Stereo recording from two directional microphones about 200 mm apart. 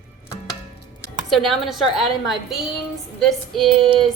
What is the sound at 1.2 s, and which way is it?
A woman's voice, centre (ahead or behind).